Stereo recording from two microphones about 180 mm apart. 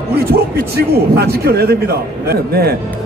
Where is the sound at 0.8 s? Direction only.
60° right (ahead or behind).